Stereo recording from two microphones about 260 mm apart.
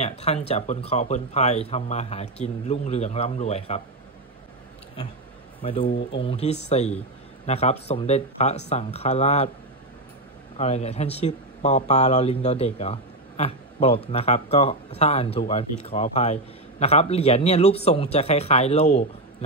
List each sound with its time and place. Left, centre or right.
0.0 s speech: left
5.6 s a man's voice: left
5.9 s speech: left
6.2 s speech: left
10.6 s speech: left